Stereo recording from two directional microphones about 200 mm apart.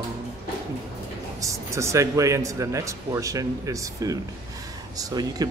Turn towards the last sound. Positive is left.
turn(degrees=-20)  # may be behind; listen again after turning